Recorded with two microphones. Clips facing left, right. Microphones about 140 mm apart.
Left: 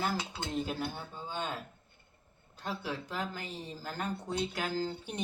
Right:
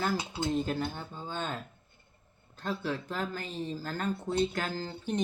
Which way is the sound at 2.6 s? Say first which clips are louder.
Right 4 dB; 15° left (ahead or behind).